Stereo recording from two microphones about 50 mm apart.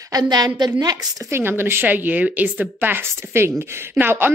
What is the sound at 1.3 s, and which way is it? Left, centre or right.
Speech, right.